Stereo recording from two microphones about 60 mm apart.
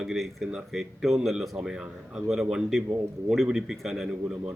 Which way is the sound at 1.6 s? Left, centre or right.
Centre.